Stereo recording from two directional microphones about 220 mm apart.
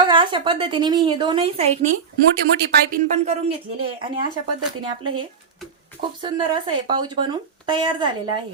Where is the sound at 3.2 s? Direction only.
30° right (ahead or behind).